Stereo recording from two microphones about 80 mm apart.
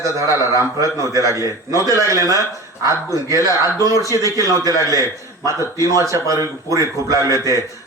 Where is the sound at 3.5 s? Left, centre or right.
Left.